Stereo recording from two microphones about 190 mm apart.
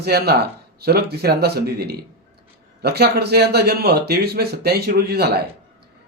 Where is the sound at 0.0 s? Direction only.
60° right (ahead or behind).